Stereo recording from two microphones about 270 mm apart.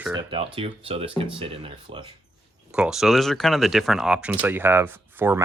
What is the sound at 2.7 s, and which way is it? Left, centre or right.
Speech, centre.